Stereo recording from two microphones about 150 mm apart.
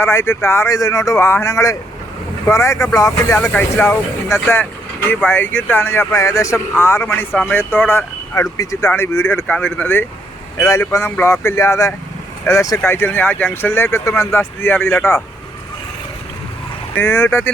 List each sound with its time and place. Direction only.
0.0 s speech: 15° left (ahead or behind)
16.9 s speech: 15° left (ahead or behind)